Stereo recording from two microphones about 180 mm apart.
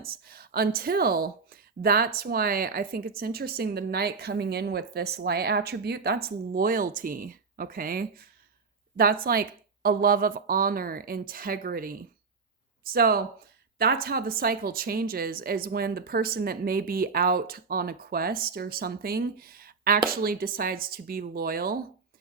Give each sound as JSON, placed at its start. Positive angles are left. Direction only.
{"t": 0.0, "sound": "speech", "side_deg": -55}